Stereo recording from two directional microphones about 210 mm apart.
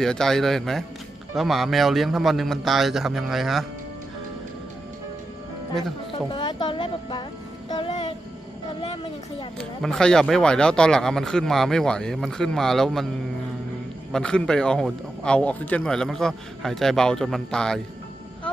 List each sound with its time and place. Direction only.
0.0 s speech: centre (ahead or behind)
6.3 s speech: 20° left (ahead or behind)
7.7 s music: 20° left (ahead or behind)
8.8 s speech: 25° left (ahead or behind)
9.6 s speech: centre (ahead or behind)
14.1 s speech: 5° left (ahead or behind)